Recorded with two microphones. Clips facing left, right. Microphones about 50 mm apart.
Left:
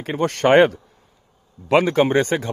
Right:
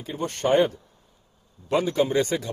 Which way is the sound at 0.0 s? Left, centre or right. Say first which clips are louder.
Left 7 dB; left.